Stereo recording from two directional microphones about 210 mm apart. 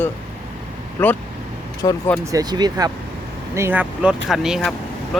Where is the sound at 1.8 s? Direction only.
15° left (ahead or behind).